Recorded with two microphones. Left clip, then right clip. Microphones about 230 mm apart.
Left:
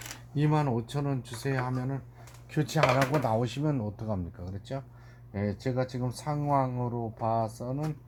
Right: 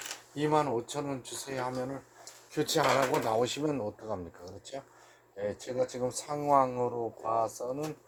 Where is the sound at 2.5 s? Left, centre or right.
Right.